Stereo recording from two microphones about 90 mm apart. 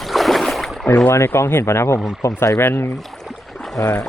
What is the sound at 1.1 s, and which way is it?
Speech, 30° left (ahead or behind).